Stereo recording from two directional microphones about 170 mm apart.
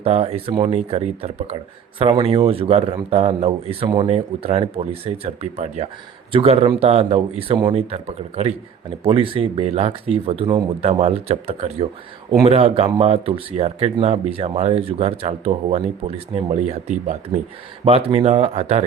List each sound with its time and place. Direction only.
0.0 s speech: 35° right (ahead or behind)